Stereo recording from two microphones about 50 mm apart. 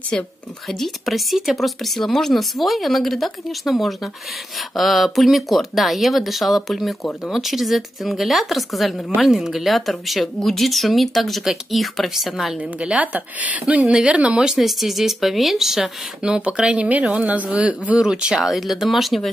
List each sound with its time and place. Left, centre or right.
0.1 s speech: centre
0.7 s speech: centre
12.5 s speech: right
14.4 s speech: centre; by 17.5 s right
17.5 s speech: centre
18.4 s speech: centre